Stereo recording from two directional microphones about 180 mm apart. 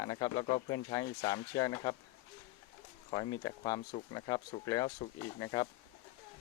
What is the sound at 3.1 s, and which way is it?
Speech, 25° left (ahead or behind).